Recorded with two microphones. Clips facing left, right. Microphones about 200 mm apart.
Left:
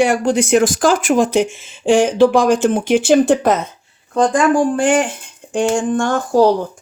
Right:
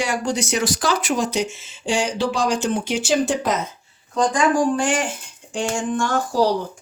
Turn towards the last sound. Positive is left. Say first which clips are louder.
# left 6 dB
turn(degrees=50)  # may be behind; listen again after turning